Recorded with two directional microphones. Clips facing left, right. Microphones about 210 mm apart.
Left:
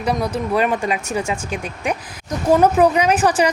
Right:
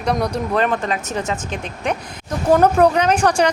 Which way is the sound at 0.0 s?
5° left (ahead or behind).